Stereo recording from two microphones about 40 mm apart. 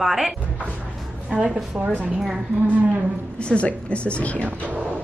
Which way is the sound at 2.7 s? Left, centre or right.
Right.